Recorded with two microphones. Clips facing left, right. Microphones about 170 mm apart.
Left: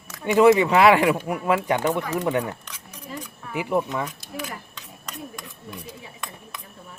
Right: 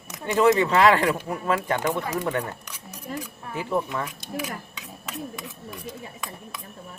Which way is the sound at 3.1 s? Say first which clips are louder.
Right 3 dB; 50° right (ahead or behind).